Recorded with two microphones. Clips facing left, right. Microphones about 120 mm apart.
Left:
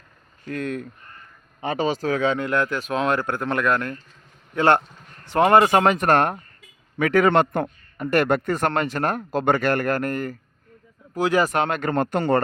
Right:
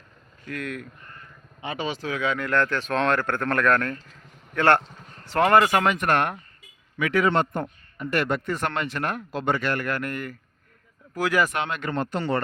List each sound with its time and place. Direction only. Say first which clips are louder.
0.4 s speech: left 5 dB; 30° left (ahead or behind)
2.5 s speech: left 1 dB; 10° left (ahead or behind)
5.8 s speech: left 4 dB; 35° left (ahead or behind)
7.0 s a man's voice: left 4 dB; 50° left (ahead or behind); by 7.7 s 65° left (ahead or behind)
7.9 s speech: left 5 dB; 45° left (ahead or behind)
11.1 s speech: left 3 dB; 25° left (ahead or behind); by 12.4 s 50° left (ahead or behind)